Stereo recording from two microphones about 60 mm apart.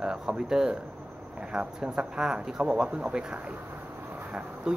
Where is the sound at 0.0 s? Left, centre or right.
Centre.